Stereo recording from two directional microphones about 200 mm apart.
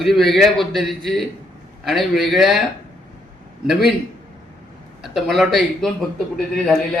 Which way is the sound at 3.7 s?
Centre (ahead or behind).